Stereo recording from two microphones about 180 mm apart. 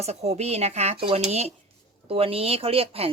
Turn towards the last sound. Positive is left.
turn(degrees=-30)  # may be behind; listen again after turning